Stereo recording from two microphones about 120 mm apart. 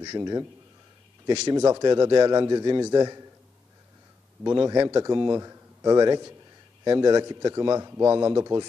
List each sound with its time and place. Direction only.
0.0 s speech: 30° right (ahead or behind)
1.5 s a man's voice: 30° right (ahead or behind)
4.4 s a man's voice: 30° right (ahead or behind)